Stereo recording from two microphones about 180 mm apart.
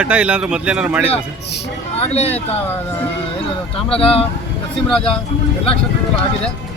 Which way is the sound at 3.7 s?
30° left (ahead or behind).